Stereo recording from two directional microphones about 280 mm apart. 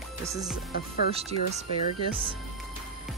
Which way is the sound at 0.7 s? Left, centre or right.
Left.